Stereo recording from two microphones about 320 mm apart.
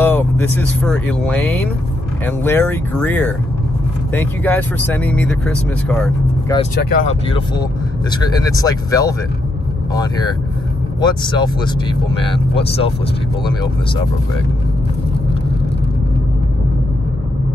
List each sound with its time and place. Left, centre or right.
0.0 s speech: centre
6.5 s speech: centre
11.0 s speech: centre